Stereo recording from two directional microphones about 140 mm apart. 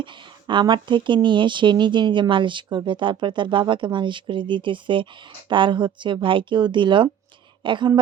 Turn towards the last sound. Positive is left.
turn(degrees=-35)  # may be behind; listen again after turning